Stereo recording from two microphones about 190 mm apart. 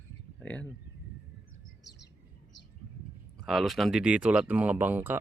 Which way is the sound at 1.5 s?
65° left (ahead or behind).